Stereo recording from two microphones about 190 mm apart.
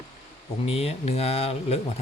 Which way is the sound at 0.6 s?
30° left (ahead or behind).